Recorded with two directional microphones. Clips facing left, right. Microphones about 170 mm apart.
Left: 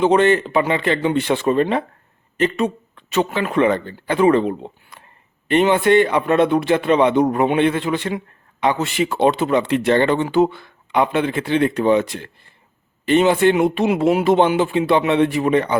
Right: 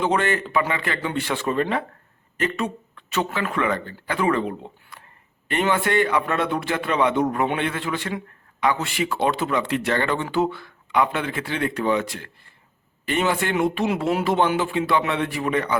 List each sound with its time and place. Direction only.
0.0 s speech: 20° left (ahead or behind)
2.9 s speech: 20° left (ahead or behind)